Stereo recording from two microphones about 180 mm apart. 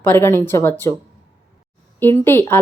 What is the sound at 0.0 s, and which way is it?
Speech, 10° left (ahead or behind).